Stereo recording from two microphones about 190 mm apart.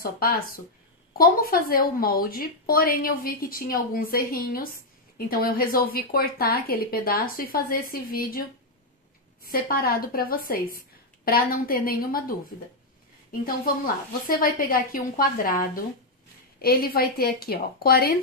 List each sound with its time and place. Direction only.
0.0 s a woman's voice: 50° left (ahead or behind)
14.2 s a woman's voice: 50° left (ahead or behind)